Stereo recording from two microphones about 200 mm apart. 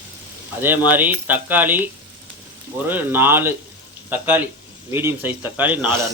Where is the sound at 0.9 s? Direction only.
10° right (ahead or behind).